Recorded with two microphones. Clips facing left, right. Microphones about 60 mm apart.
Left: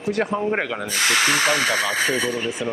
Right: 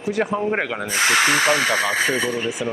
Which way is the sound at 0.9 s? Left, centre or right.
Centre.